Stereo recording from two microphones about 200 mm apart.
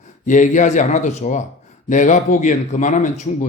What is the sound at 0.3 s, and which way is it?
A man's voice, 40° left (ahead or behind).